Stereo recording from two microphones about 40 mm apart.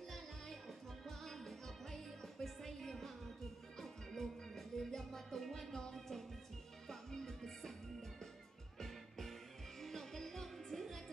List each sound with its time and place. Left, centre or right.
0.1 s music: centre
8.7 s music: centre